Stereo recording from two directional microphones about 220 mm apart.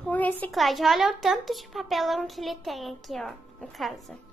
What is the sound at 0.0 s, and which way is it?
A child's voice, 5° left (ahead or behind).